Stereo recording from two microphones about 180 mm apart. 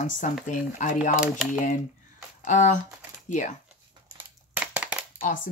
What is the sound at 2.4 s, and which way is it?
Speech, 45° left (ahead or behind).